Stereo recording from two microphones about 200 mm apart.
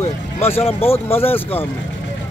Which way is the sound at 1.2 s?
10° left (ahead or behind).